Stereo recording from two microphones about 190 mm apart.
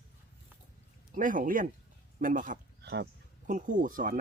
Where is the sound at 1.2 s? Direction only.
45° right (ahead or behind).